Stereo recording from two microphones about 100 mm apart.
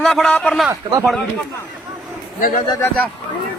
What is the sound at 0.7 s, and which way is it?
Speech, 35° right (ahead or behind).